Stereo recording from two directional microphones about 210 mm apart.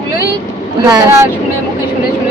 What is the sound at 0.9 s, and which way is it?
Speech, 20° right (ahead or behind).